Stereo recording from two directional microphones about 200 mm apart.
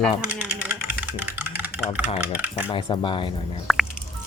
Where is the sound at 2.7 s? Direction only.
25° left (ahead or behind).